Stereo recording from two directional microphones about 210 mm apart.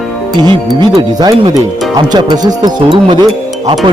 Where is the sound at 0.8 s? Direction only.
20° right (ahead or behind).